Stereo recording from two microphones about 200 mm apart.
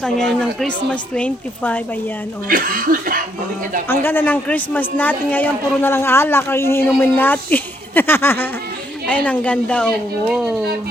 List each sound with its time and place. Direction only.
0.0 s speech: 5° left (ahead or behind)
2.5 s speech: 45° right (ahead or behind)
3.8 s speech: 10° left (ahead or behind)